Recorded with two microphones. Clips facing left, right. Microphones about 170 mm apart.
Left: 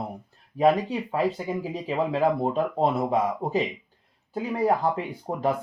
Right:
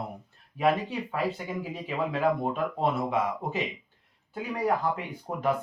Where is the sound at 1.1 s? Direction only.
30° left (ahead or behind).